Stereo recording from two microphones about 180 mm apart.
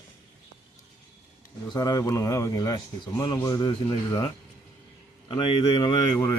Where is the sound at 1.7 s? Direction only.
20° left (ahead or behind).